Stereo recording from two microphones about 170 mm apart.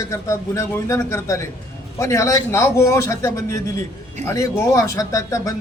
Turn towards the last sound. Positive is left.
turn(degrees=20)  # may be behind; listen again after turning